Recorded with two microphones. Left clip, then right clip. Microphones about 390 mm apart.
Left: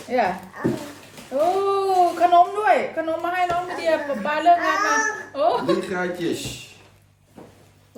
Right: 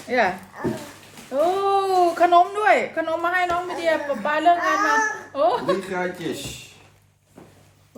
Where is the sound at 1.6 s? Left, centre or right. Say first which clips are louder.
Even; right.